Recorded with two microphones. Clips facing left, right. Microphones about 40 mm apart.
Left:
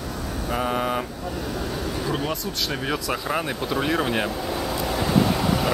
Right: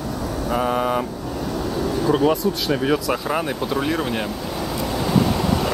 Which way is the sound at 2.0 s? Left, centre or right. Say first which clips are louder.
Right 12 dB; centre.